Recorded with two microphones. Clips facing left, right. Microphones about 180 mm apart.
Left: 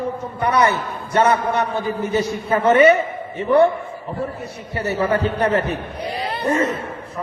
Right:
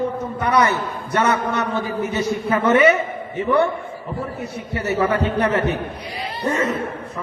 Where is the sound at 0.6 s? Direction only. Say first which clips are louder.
Left 1 dB; 30° left (ahead or behind).